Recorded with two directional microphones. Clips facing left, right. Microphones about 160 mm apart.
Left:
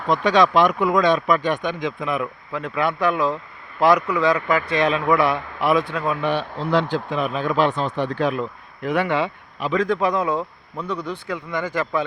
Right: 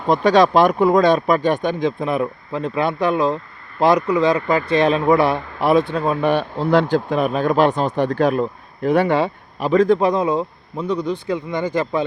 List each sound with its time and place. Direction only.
0.0 s speech: 35° right (ahead or behind)